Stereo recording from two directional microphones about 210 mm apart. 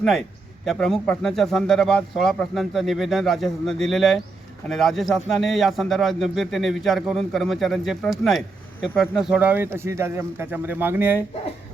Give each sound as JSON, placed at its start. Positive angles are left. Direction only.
{"t": 0.0, "sound": "speech", "side_deg": 0}